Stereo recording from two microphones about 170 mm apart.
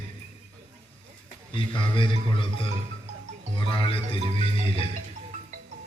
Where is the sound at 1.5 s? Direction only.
30° left (ahead or behind).